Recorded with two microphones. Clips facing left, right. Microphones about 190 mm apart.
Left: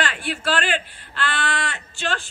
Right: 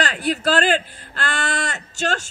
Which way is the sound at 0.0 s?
40° right (ahead or behind).